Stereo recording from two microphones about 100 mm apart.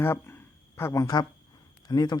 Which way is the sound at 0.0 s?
25° left (ahead or behind).